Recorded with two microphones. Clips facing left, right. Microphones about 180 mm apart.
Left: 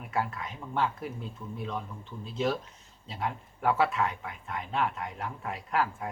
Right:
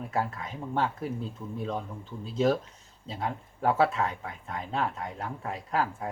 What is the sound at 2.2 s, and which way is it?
Speech, 40° right (ahead or behind).